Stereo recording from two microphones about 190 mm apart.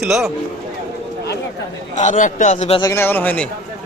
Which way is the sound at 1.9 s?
40° left (ahead or behind).